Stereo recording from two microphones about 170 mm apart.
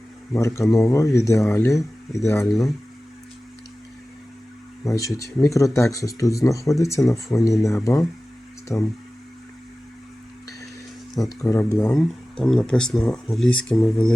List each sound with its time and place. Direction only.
0.3 s speech: 15° left (ahead or behind)
4.9 s speech: 20° left (ahead or behind)
11.3 s speech: 15° left (ahead or behind)
11.9 s speech: centre (ahead or behind)